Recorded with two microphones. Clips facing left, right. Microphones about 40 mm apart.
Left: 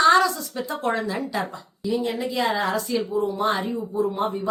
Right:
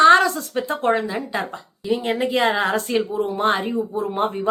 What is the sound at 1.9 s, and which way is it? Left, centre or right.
A woman's voice, right.